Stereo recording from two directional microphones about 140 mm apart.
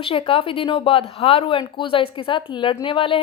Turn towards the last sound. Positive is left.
turn(degrees=40)  # may be behind; listen again after turning